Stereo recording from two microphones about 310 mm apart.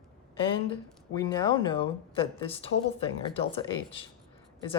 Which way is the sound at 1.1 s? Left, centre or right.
Centre.